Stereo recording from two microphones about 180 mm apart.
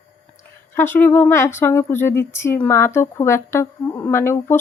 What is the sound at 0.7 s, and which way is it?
Speech, 10° left (ahead or behind).